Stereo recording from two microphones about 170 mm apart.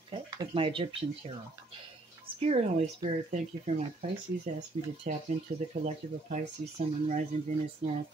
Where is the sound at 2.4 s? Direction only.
40° right (ahead or behind).